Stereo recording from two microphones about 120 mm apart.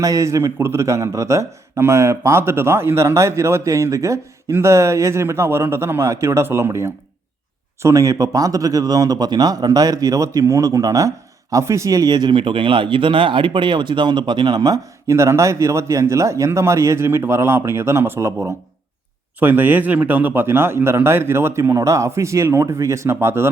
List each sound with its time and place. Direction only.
0.0 s speech: 25° right (ahead or behind)
19.4 s speech: 15° right (ahead or behind)